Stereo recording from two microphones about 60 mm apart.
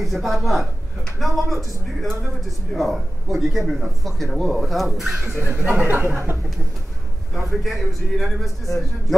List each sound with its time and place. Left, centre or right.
0.0 s speech: centre
5.9 s speech: right
7.3 s speech: centre